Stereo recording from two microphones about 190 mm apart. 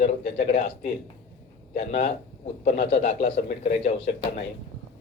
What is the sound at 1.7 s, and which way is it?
Speech, 40° left (ahead or behind).